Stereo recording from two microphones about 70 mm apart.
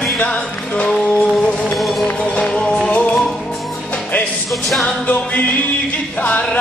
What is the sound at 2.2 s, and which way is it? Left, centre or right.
Music, centre.